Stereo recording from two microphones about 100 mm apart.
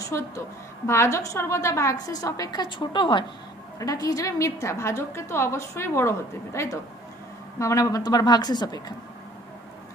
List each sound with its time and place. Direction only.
0.1 s a woman's voice: 30° left (ahead or behind); by 3.3 s 55° left (ahead or behind)
3.8 s a woman's voice: 35° left (ahead or behind)